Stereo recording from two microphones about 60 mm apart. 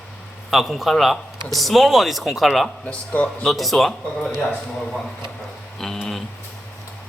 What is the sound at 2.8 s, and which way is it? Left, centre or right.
Speech, left.